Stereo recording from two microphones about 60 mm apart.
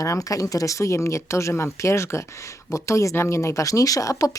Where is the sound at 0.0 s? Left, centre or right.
Left.